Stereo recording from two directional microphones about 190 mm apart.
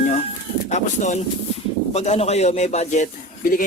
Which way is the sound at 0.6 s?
35° left (ahead or behind).